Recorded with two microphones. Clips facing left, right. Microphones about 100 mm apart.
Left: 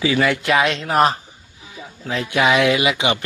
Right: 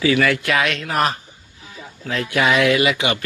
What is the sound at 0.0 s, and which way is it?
Speech, 20° left (ahead or behind).